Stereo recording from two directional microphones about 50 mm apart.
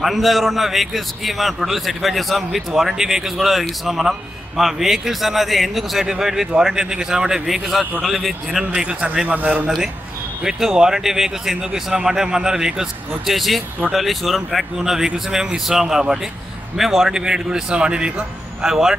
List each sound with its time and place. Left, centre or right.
0.0 s a man's voice: centre
8.7 s a man's voice: right
10.4 s a man's voice: centre